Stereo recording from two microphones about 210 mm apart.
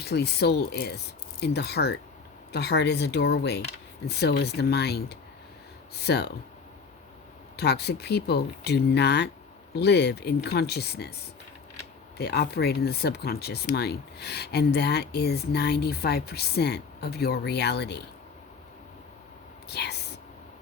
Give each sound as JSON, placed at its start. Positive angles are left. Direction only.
{"t": 0.0, "sound": "speech", "side_deg": 50}
{"t": 7.5, "sound": "speech", "side_deg": 50}
{"t": 19.6, "sound": "whispering", "side_deg": 50}